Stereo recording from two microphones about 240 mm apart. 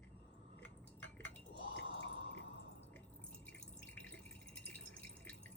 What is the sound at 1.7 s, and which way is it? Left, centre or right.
Drip, left.